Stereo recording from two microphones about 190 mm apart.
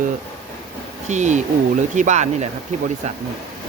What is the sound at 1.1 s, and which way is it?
Speech, 40° right (ahead or behind).